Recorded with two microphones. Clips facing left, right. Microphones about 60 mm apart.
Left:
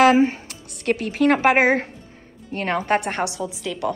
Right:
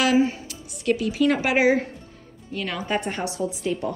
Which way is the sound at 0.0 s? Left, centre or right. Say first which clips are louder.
Left 5 dB; left.